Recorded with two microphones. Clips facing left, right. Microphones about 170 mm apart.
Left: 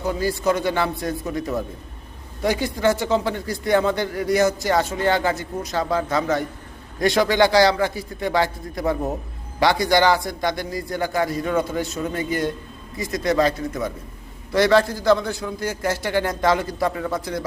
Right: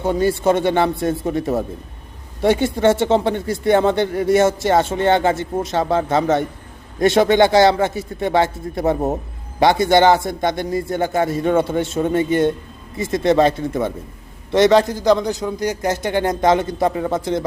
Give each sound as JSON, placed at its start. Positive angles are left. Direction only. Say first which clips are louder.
{"t": 0.2, "sound": "a man's voice", "louder": "right 6 dB", "side_deg": -25}